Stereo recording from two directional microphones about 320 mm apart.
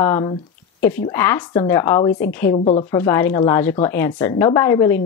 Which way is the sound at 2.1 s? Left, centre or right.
Left.